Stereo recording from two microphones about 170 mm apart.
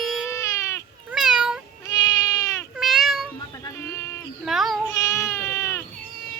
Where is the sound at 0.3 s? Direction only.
20° left (ahead or behind).